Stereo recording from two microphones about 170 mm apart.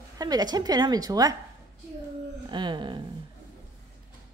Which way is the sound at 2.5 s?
25° right (ahead or behind).